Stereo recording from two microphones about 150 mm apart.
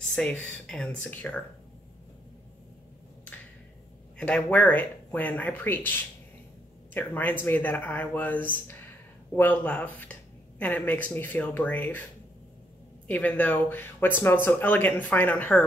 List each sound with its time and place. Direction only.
0.0 s speech: 5° left (ahead or behind)
4.2 s speech: 10° left (ahead or behind)